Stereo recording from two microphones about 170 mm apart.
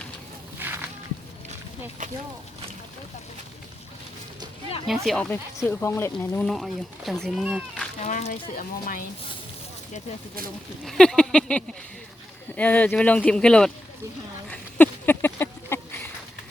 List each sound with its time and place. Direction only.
0.6 s a sound: 10° right (ahead or behind)
2.0 s speech: 50° right (ahead or behind)
5.0 s speech: 5° left (ahead or behind)
6.5 s speech: centre (ahead or behind)
8.0 s speech: 45° left (ahead or behind)
10.8 s speech: 5° left (ahead or behind)
14.5 s a sound: 10° left (ahead or behind)